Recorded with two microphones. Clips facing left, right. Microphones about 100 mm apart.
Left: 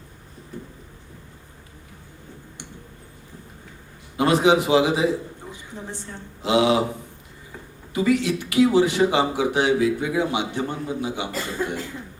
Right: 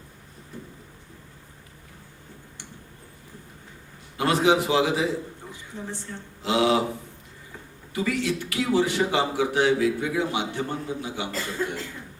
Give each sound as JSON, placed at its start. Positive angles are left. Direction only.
{"t": 4.2, "sound": "a man's voice", "side_deg": 20}
{"t": 7.9, "sound": "a man's voice", "side_deg": 20}